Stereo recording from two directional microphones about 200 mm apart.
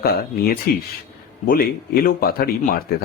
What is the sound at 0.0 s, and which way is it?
Speech, 50° left (ahead or behind).